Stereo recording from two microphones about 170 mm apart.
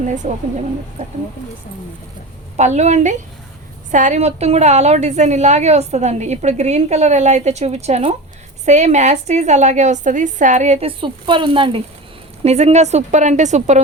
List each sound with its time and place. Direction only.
0.0 s a woman's voice: 45° right (ahead or behind)
2.6 s a woman's voice: 40° right (ahead or behind)